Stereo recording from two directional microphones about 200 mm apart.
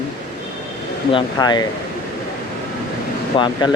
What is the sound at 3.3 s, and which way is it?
Speech, 25° left (ahead or behind).